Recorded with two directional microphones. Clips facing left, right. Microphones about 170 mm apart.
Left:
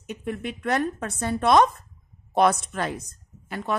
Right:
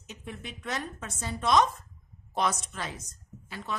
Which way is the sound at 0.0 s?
55° left (ahead or behind).